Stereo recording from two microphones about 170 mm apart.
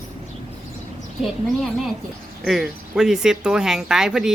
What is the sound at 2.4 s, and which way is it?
Speech, 5° right (ahead or behind).